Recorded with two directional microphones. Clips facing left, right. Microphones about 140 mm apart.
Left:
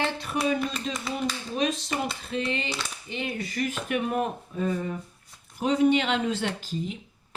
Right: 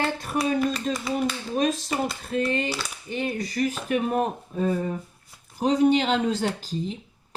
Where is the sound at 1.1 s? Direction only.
45° right (ahead or behind).